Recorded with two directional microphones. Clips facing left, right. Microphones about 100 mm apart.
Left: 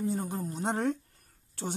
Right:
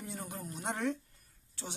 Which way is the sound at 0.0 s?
30° left (ahead or behind).